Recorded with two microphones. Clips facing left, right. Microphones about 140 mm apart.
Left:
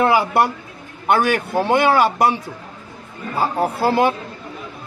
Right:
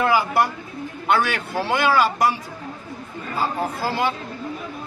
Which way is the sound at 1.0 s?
50° left (ahead or behind).